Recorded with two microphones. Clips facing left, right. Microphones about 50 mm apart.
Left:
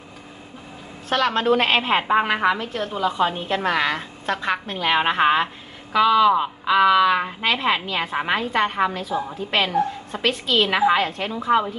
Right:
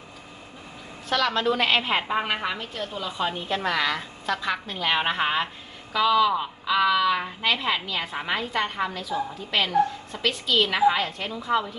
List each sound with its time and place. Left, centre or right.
1.1 s a woman's voice: left
7.6 s a woman's voice: left